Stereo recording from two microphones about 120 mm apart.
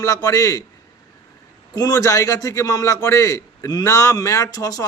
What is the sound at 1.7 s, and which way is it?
A man's voice, 30° left (ahead or behind).